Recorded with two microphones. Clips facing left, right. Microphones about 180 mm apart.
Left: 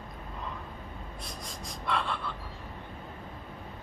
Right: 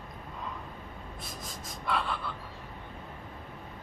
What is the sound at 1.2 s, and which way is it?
Gasp, centre (ahead or behind).